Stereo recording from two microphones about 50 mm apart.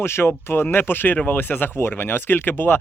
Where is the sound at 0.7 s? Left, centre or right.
Left.